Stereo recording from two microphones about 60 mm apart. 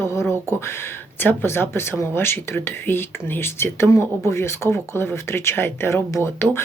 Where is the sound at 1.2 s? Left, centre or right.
Left.